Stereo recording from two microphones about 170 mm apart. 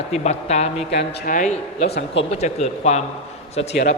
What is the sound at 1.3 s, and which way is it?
Speech, 50° left (ahead or behind).